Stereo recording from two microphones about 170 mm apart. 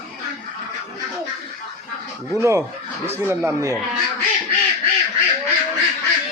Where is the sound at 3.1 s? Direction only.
15° right (ahead or behind).